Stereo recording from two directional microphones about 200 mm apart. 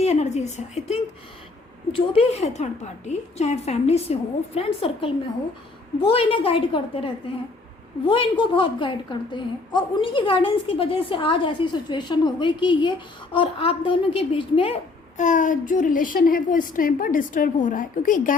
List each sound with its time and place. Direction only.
0.0 s a woman's voice: 35° left (ahead or behind)
15.2 s a woman's voice: 40° left (ahead or behind)